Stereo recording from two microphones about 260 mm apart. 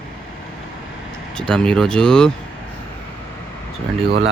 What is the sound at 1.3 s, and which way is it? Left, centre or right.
Speech, centre.